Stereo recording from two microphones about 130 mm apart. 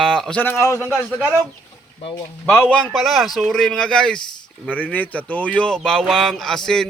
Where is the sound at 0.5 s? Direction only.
25° left (ahead or behind).